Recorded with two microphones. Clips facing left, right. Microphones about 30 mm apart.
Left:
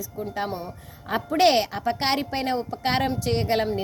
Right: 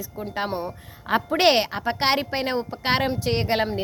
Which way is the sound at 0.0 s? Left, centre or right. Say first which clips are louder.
Right 1 dB; right.